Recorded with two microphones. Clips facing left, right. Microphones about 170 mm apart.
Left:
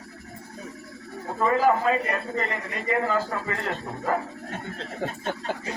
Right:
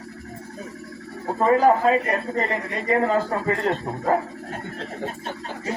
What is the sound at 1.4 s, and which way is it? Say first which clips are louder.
Speech: right 4 dB; 35° right (ahead or behind).